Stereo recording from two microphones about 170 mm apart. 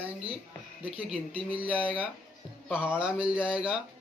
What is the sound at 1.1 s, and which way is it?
Speech, 35° right (ahead or behind).